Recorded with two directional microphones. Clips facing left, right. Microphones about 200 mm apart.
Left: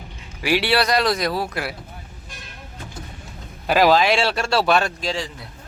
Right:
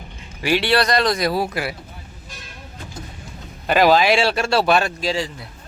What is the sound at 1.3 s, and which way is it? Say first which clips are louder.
Speech: right 3 dB; 10° right (ahead or behind).